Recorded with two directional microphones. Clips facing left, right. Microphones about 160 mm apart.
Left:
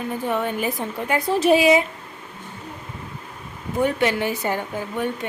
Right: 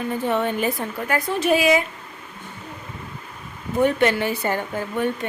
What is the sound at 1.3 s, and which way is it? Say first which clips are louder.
Speech: left 3 dB; 35° left (ahead or behind).